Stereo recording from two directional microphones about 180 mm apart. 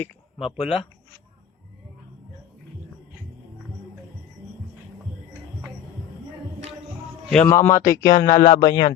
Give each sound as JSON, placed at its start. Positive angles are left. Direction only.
{"t": 0.3, "sound": "speech", "side_deg": 0}
{"t": 7.4, "sound": "speech", "side_deg": 15}